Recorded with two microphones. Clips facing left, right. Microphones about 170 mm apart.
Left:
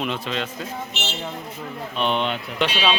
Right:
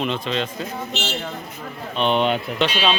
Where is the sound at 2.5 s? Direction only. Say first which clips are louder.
Left 3 dB; 10° left (ahead or behind).